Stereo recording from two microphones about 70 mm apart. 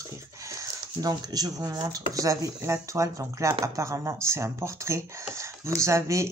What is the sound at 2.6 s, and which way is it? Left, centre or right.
Speech, right.